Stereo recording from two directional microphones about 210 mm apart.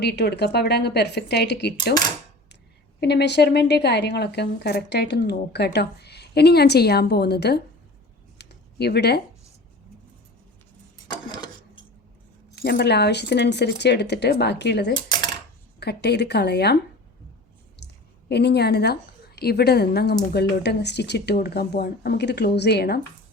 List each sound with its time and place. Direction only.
0.0 s a woman's voice: 50° left (ahead or behind)
3.0 s a woman's voice: 50° left (ahead or behind)
8.4 s a sound: 50° left (ahead or behind)
11.1 s a sound: 20° left (ahead or behind)
12.6 s a woman's voice: 55° left (ahead or behind)
14.9 s dishes: 20° left (ahead or behind)
15.8 s a woman's voice: 50° left (ahead or behind)
17.8 s a sound: 55° left (ahead or behind)
18.3 s a woman's voice: 50° left (ahead or behind)